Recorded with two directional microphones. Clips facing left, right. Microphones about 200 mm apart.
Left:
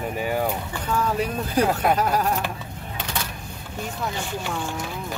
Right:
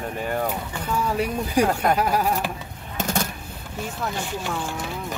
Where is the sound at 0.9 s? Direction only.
10° right (ahead or behind).